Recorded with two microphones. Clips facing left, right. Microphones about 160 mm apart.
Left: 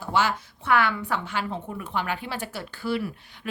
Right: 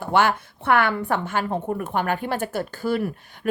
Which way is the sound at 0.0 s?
60° right (ahead or behind).